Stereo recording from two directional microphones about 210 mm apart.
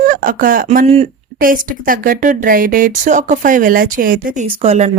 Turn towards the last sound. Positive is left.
turn(degrees=-30)  # may be behind; listen again after turning